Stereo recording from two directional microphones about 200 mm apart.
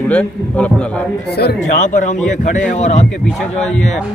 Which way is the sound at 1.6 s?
40° left (ahead or behind).